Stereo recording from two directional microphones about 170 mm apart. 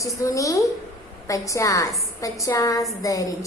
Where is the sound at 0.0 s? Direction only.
20° left (ahead or behind).